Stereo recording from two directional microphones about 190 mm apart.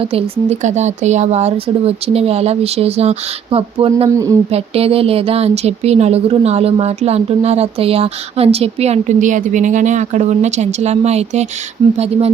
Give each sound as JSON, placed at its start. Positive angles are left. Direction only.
{"t": 0.0, "sound": "a woman's voice", "side_deg": -30}
{"t": 4.1, "sound": "speech", "side_deg": -15}
{"t": 4.5, "sound": "a woman's voice", "side_deg": -30}